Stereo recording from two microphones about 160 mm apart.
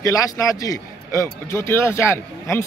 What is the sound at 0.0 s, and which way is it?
A man's voice, 20° left (ahead or behind).